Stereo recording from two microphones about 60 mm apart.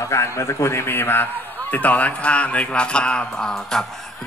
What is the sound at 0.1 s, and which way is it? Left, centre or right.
A man's voice, left.